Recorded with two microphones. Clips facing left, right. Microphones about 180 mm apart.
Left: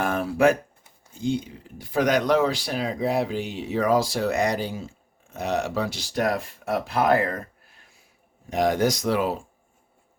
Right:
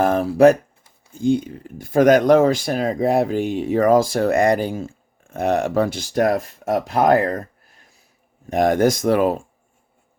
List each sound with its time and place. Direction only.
0.0 s speech: 40° right (ahead or behind)
1.2 s speech: 50° right (ahead or behind)
8.4 s speech: 50° right (ahead or behind)